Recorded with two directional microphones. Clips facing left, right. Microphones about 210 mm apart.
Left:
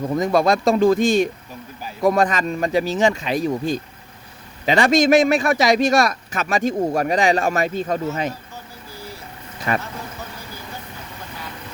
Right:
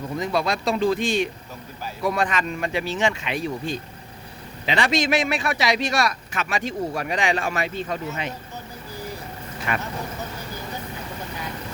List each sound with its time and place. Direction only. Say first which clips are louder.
0.2 s a man's voice: left 6 dB; 45° left (ahead or behind)
9.7 s speech: left 5 dB; 35° left (ahead or behind)